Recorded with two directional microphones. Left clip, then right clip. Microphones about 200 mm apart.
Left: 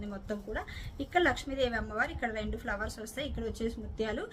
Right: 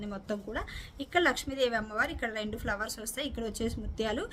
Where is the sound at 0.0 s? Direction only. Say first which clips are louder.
Right 2 dB; 25° right (ahead or behind).